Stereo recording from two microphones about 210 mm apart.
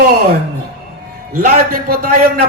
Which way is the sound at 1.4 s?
45° right (ahead or behind).